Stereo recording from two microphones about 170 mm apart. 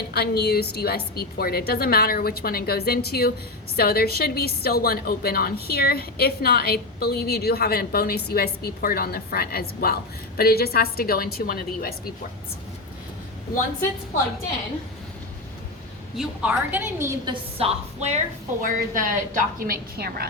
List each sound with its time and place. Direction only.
0.1 s a woman's voice: 70° left (ahead or behind)
16.1 s a woman's voice: 5° right (ahead or behind)
17.2 s a woman's voice: 40° right (ahead or behind)
18.6 s a woman's voice: 50° right (ahead or behind)